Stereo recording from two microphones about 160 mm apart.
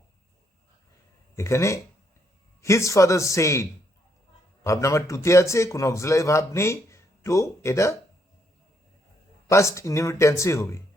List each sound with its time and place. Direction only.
1.4 s a man's voice: 20° left (ahead or behind)
9.5 s speech: 20° left (ahead or behind)